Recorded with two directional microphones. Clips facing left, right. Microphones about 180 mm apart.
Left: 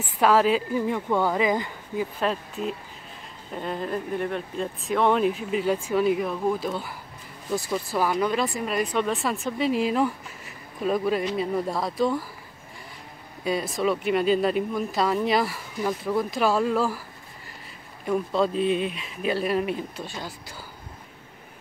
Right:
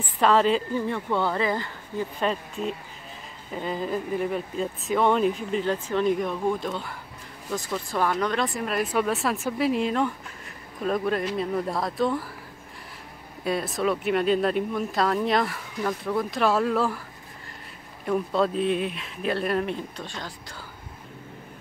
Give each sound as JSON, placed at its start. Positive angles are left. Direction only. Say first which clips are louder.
{"t": 0.2, "sound": "speech", "louder": "left 1 dB", "side_deg": 5}
{"t": 2.1, "sound": "speech", "louder": "even", "side_deg": 0}
{"t": 13.4, "sound": "speech", "louder": "left 1 dB", "side_deg": 0}
{"t": 18.0, "sound": "speech", "louder": "even", "side_deg": 0}